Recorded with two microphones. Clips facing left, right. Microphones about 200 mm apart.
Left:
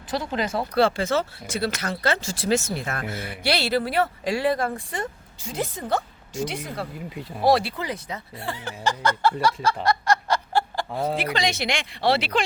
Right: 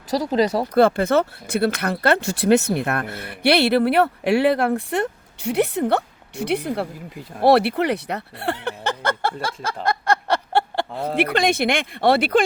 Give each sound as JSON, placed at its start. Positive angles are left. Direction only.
{"t": 0.1, "sound": "speech", "side_deg": -35}
{"t": 0.8, "sound": "speech", "side_deg": -55}
{"t": 9.8, "sound": "snicker", "side_deg": -55}
{"t": 10.9, "sound": "speech", "side_deg": 0}
{"t": 11.2, "sound": "speech", "side_deg": -55}